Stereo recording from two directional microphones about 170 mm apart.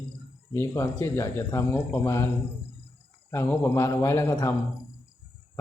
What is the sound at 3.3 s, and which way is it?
Speech, 15° left (ahead or behind).